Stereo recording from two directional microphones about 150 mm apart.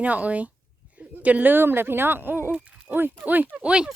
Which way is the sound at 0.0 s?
10° right (ahead or behind).